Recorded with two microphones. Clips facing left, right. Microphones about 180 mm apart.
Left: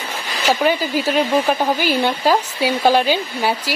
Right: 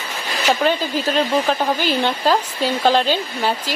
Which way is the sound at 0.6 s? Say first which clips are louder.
Left 1 dB; 10° left (ahead or behind).